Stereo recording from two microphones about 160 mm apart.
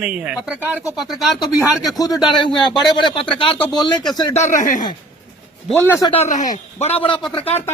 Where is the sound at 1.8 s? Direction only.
25° left (ahead or behind).